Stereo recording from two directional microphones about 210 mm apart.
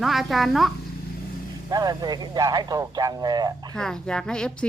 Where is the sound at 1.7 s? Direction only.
20° right (ahead or behind).